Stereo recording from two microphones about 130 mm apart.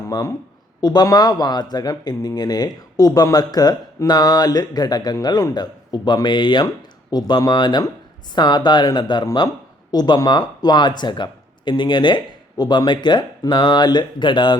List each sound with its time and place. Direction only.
0.0 s speech: 30° left (ahead or behind)